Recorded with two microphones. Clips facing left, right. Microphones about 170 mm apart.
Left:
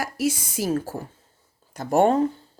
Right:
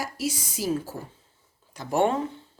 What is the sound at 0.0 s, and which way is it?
A woman's voice, 55° left (ahead or behind).